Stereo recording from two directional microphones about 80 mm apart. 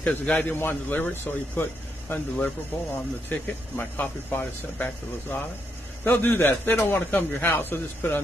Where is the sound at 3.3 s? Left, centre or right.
Left.